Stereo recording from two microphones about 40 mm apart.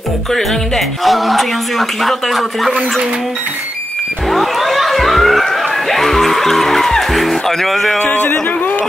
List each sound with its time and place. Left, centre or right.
0.3 s speech: centre
4.3 s a sound: centre
8.0 s speech: left